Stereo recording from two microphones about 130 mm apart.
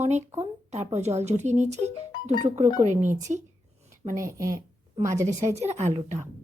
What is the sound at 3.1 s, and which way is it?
Speech, 65° right (ahead or behind).